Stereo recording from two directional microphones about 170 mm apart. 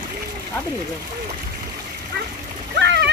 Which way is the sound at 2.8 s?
90° right.